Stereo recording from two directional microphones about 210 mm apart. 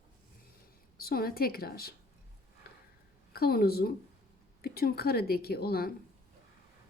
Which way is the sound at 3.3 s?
45° left (ahead or behind).